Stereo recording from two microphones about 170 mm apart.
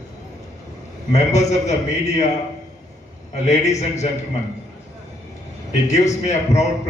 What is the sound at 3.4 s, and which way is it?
Speech, 40° left (ahead or behind).